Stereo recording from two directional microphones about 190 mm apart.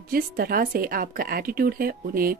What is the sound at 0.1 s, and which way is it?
A woman's voice, 50° right (ahead or behind).